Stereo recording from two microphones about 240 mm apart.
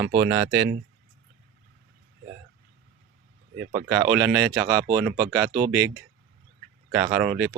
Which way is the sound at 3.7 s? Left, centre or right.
Centre.